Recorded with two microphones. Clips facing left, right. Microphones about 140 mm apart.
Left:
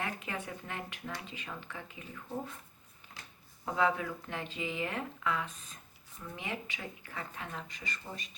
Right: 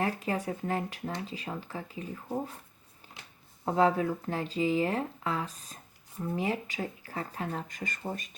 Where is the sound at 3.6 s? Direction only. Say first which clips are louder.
Right 6 dB; 35° right (ahead or behind).